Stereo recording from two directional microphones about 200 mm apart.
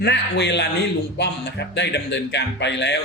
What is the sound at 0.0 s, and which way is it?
A man's voice, 60° left (ahead or behind).